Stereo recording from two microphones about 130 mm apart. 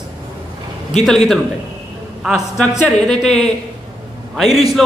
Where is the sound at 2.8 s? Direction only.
5° left (ahead or behind).